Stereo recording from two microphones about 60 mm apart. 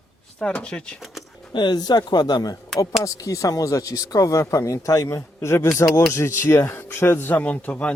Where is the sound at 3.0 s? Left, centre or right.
Left.